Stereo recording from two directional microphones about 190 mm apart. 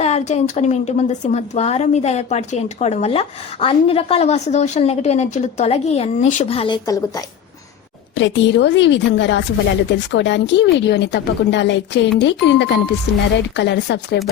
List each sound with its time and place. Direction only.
0.0 s a woman's voice: 35° left (ahead or behind)
8.1 s a woman's voice: 70° left (ahead or behind)